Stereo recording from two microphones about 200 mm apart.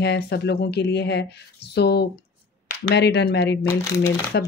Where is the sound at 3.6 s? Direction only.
15° left (ahead or behind).